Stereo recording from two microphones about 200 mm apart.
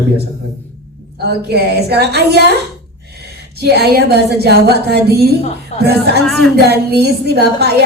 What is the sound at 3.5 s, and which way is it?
A woman's voice, 55° right (ahead or behind).